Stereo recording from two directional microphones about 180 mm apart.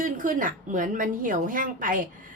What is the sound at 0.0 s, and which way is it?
A woman's voice, 45° right (ahead or behind).